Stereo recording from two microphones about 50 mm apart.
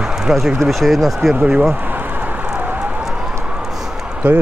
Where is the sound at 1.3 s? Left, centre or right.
Right.